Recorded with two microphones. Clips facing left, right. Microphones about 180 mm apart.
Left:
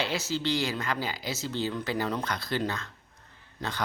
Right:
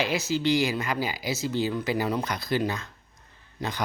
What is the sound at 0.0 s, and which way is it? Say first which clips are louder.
Speech: right 4 dB; 10° right (ahead or behind).